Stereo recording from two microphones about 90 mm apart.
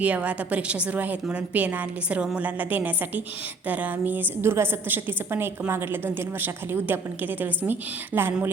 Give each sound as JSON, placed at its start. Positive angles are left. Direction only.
{"t": 0.0, "sound": "a woman's voice", "side_deg": -15}